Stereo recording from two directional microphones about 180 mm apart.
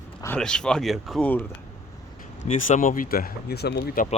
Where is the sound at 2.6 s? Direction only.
45° left (ahead or behind).